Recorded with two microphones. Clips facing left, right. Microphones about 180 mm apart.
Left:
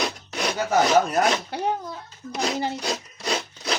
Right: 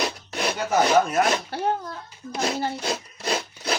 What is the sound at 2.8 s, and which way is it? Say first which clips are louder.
Wood: right 1 dB; centre (ahead or behind).